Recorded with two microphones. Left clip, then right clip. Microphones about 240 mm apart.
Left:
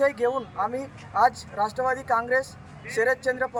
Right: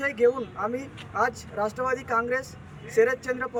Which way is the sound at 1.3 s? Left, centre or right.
Centre.